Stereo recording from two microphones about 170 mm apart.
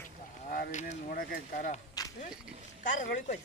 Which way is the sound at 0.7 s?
50° left (ahead or behind).